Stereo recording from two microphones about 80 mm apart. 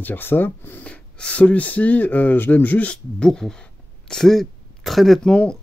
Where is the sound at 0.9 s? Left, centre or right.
Centre.